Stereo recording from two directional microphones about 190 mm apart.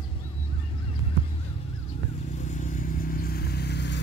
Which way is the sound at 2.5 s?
40° left (ahead or behind).